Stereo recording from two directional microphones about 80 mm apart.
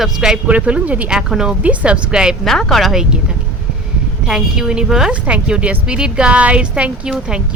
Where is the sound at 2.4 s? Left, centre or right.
Centre.